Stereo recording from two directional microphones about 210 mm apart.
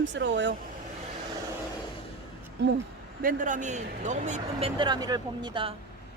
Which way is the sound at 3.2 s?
40° right (ahead or behind).